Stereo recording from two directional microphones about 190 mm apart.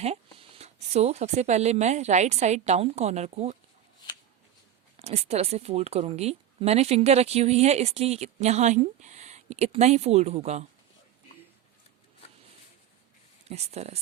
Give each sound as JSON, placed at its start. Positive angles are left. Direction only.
{"t": 0.0, "sound": "speech", "side_deg": -30}
{"t": 4.9, "sound": "speech", "side_deg": -35}
{"t": 13.5, "sound": "speech", "side_deg": -35}